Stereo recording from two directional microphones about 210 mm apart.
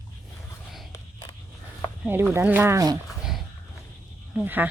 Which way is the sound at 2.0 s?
10° right (ahead or behind).